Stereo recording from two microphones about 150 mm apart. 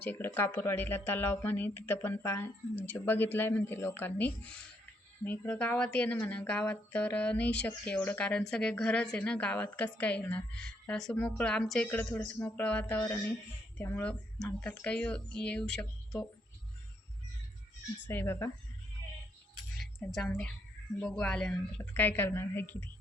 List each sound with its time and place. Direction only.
0.0 s speech: 10° left (ahead or behind)
18.1 s speech: 15° left (ahead or behind)
19.8 s speech: centre (ahead or behind)